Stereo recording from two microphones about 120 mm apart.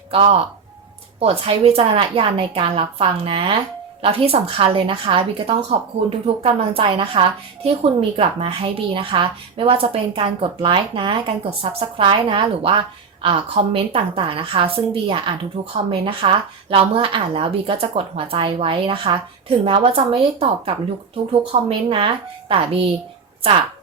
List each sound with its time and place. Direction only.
0.1 s a woman's voice: 55° right (ahead or behind)
11.6 s a woman's voice: 55° right (ahead or behind)